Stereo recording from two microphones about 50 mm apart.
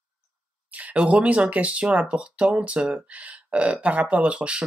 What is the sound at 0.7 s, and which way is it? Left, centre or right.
Speech, right.